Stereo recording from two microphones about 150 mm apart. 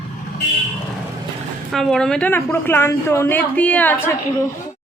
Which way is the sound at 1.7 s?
Centre (ahead or behind).